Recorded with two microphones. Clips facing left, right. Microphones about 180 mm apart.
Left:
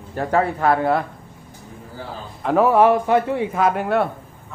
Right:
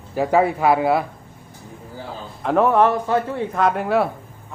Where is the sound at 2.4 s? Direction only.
Centre (ahead or behind).